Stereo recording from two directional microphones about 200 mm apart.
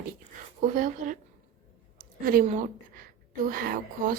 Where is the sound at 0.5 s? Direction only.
40° right (ahead or behind).